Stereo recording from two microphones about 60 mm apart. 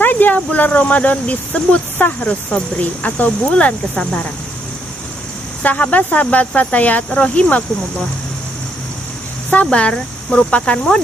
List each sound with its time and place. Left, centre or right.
0.0 s speech: left
5.6 s speech: left
9.5 s speech: left